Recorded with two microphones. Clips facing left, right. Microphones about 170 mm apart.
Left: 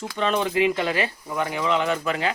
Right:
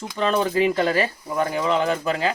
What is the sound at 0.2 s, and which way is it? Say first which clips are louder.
Speech: right 2 dB; 35° right (ahead or behind).